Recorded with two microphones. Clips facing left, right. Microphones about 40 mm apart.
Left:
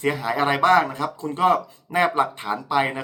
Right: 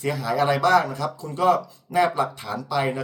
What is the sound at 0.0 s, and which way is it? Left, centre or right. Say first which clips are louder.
Speech: left 1 dB; left.